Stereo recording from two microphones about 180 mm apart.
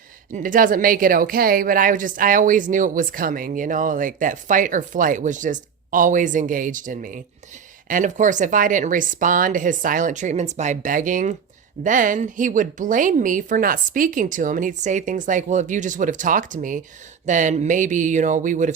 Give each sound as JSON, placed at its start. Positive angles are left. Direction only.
{"t": 0.3, "sound": "a woman's voice", "side_deg": -50}